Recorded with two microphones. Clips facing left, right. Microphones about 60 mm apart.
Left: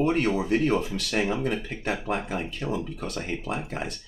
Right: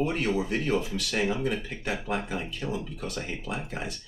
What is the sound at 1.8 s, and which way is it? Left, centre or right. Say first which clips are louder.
Speech: left 3 dB; left.